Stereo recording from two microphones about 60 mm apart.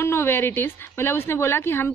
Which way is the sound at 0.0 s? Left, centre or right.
Left.